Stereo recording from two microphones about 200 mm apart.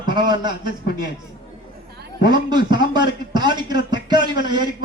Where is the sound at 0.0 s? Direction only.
20° right (ahead or behind).